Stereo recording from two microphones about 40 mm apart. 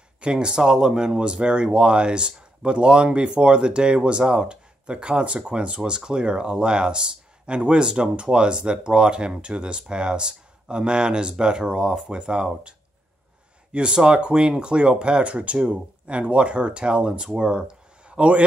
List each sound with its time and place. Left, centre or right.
0.2 s speech: right
13.7 s speech: right